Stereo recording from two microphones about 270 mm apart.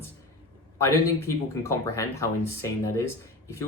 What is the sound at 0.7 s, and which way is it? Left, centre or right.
Speech, centre.